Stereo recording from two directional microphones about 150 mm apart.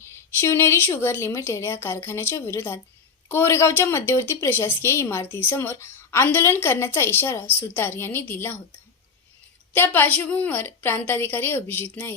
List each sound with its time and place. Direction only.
0.0 s a woman's voice: 15° left (ahead or behind)
9.7 s a woman's voice: 15° left (ahead or behind)